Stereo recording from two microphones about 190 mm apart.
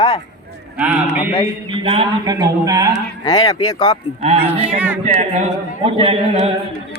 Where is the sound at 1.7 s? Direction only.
30° right (ahead or behind).